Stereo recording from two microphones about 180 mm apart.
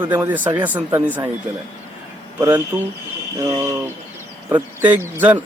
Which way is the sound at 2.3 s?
10° right (ahead or behind).